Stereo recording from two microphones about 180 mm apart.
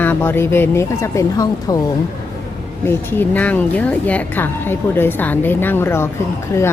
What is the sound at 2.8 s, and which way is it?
A woman's voice, 10° left (ahead or behind).